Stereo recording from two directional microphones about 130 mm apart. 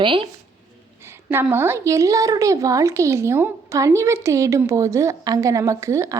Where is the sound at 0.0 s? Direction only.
40° right (ahead or behind).